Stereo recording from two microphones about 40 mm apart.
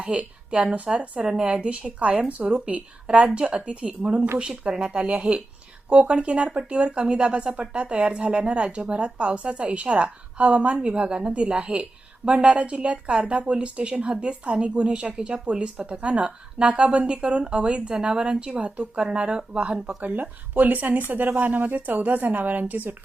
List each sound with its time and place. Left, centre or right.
0.0 s a woman's voice: right
20.0 s a woman's voice: right